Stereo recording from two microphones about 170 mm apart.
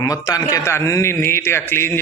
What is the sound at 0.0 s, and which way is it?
A man's voice, 20° left (ahead or behind).